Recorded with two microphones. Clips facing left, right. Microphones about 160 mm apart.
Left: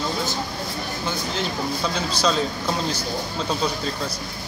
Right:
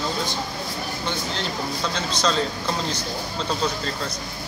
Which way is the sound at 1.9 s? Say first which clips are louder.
Even; 10° left (ahead or behind).